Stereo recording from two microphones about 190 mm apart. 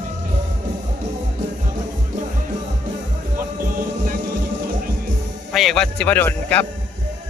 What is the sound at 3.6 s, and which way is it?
Music, 45° right (ahead or behind).